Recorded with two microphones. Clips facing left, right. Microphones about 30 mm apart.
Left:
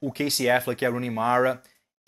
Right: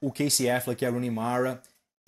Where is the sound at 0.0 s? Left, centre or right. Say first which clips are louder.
Left 1 dB; centre.